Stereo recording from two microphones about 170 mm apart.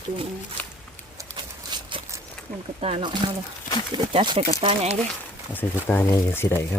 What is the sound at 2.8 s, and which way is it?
Speech, 30° right (ahead or behind).